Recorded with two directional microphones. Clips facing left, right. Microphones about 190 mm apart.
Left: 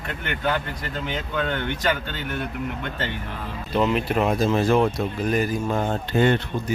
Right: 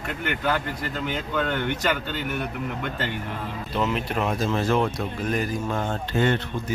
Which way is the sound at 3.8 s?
10° left (ahead or behind).